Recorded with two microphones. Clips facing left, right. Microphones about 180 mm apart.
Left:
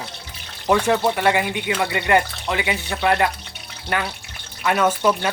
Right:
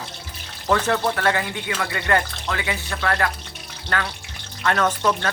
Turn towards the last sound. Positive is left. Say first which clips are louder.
# left 3 dB
turn(degrees=10)  # may be behind; listen again after turning